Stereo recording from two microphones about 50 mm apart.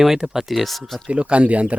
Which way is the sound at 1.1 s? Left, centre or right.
Right.